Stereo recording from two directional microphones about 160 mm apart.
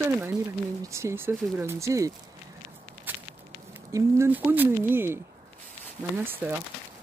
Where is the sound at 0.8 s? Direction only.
15° right (ahead or behind).